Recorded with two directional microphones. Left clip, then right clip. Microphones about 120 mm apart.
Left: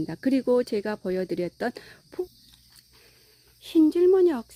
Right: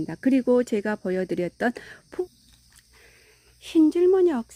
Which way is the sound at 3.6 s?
15° right (ahead or behind).